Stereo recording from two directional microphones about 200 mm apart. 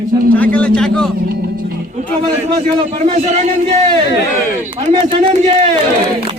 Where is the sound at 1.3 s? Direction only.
45° right (ahead or behind).